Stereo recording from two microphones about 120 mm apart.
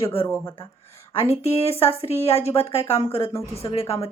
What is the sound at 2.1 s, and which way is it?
A woman's voice, 20° left (ahead or behind).